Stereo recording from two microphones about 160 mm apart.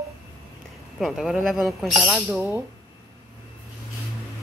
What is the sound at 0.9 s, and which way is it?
Speech, centre (ahead or behind).